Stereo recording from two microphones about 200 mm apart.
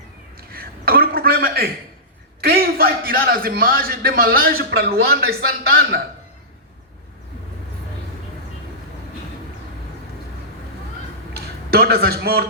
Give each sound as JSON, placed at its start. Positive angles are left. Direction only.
{"t": 0.3, "sound": "a sound", "side_deg": -50}
{"t": 2.4, "sound": "a man's voice", "side_deg": -50}
{"t": 11.3, "sound": "speech", "side_deg": -50}